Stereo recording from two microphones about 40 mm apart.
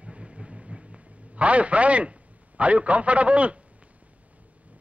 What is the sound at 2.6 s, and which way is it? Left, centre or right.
Speech, right.